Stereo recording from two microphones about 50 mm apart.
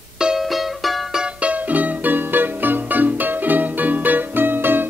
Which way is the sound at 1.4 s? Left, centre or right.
Right.